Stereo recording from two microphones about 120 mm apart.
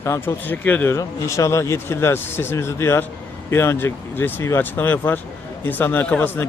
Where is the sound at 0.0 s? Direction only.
20° left (ahead or behind).